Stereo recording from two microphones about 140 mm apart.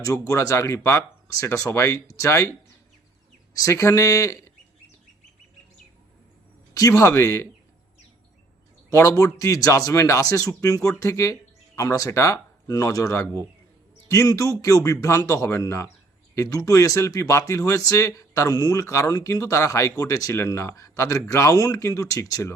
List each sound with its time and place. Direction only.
0.0 s speech: 20° left (ahead or behind)
3.5 s speech: 25° left (ahead or behind)
6.7 s speech: 25° left (ahead or behind)
8.9 s speech: 25° left (ahead or behind)